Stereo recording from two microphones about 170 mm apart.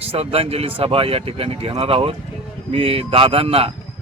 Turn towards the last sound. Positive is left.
turn(degrees=-35)  # may be behind; listen again after turning